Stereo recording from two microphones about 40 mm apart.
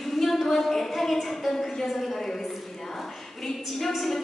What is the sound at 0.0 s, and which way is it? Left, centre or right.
A woman's voice, centre.